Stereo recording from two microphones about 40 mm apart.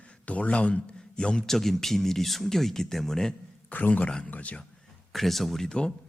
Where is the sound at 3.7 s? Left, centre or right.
Left.